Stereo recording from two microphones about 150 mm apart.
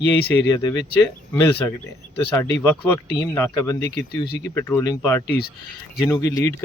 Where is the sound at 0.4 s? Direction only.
25° left (ahead or behind).